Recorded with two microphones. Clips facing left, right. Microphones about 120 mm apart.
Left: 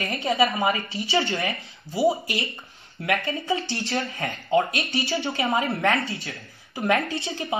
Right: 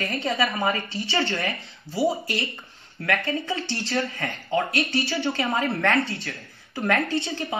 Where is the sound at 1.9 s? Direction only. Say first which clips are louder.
Left 2 dB; 25° left (ahead or behind).